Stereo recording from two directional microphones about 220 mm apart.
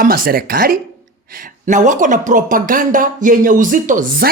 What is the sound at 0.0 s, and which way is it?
Speech, 40° right (ahead or behind).